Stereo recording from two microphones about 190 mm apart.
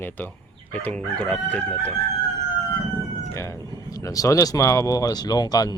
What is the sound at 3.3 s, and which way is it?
Cat, 15° left (ahead or behind).